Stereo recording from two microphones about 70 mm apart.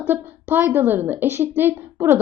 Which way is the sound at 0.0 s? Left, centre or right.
Right.